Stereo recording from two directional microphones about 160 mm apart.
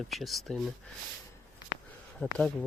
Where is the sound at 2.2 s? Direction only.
5° left (ahead or behind).